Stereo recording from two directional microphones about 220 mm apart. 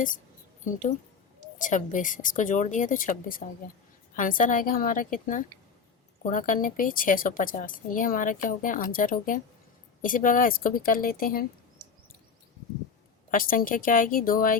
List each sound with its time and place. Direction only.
1.5 s a woman's voice: 35° left (ahead or behind)
13.3 s a woman's voice: 40° left (ahead or behind)